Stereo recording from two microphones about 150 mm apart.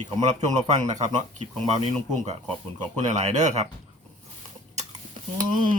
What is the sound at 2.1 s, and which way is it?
Speech, 45° right (ahead or behind).